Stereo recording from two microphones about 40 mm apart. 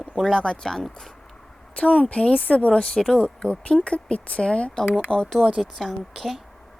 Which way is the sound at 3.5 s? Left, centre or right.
Left.